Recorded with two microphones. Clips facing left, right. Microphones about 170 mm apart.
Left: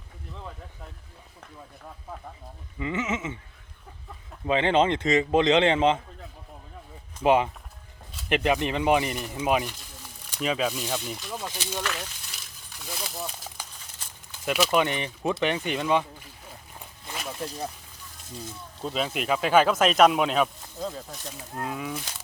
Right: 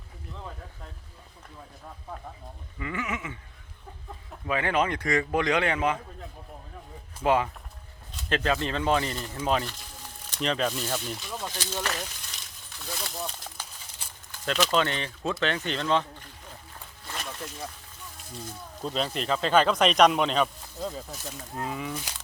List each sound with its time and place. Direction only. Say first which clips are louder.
2.7 s speech: left 4 dB; 20° left (ahead or behind)
4.4 s speech: left 4 dB; 25° left (ahead or behind)
7.2 s speech: left 3 dB; 20° left (ahead or behind)
12.8 s speech: even; 5° left (ahead or behind)
17.1 s snake: left 2 dB; 10° left (ahead or behind)
17.4 s speech: left 5 dB; 35° left (ahead or behind)
18.8 s speech: left 1 dB; 5° left (ahead or behind)